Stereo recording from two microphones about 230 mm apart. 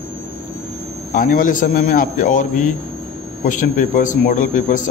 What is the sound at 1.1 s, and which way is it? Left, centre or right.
A man's voice, left.